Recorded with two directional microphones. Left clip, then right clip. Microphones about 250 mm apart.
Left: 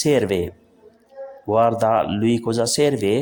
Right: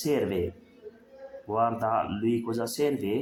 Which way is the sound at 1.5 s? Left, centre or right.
Left.